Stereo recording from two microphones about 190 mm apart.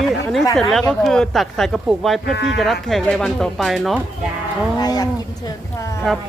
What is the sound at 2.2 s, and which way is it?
Speech, 70° left (ahead or behind).